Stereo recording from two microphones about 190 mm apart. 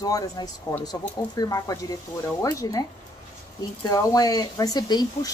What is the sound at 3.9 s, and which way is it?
A woman's voice, 20° left (ahead or behind).